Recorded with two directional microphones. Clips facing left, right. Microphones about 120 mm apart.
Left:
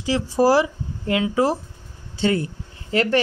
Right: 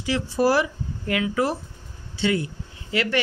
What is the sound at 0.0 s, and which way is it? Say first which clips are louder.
A man's voice: left 3 dB; 35° left (ahead or behind).